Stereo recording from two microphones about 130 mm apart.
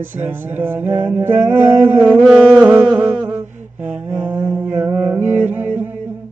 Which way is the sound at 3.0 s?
10° right (ahead or behind).